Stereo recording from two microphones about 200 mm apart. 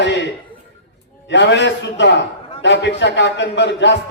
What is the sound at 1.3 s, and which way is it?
A man's voice, 60° left (ahead or behind).